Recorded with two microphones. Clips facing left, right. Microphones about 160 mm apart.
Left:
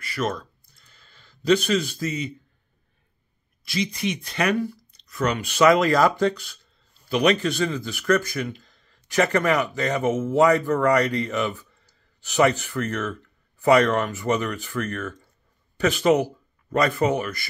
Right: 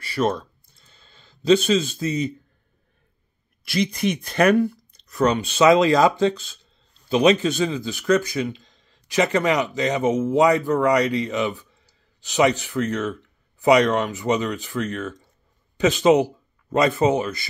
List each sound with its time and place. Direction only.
0.0 s a sound: 30° right (ahead or behind)
3.6 s speech: 60° right (ahead or behind)
5.3 s speech: 25° right (ahead or behind)